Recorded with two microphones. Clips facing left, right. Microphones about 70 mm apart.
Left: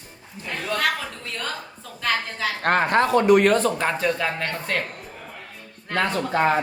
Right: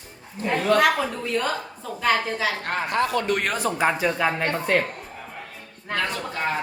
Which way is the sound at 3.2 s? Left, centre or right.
Centre.